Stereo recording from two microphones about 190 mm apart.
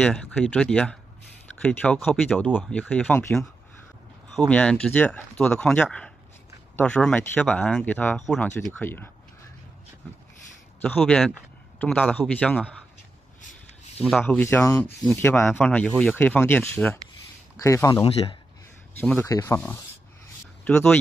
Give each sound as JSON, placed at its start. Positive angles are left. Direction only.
{"t": 0.0, "sound": "speech", "side_deg": 5}
{"t": 4.5, "sound": "speech", "side_deg": 5}
{"t": 10.8, "sound": "speech", "side_deg": 5}
{"t": 14.2, "sound": "speech", "side_deg": 10}
{"t": 18.0, "sound": "a man's voice", "side_deg": 30}
{"t": 18.9, "sound": "speech", "side_deg": 10}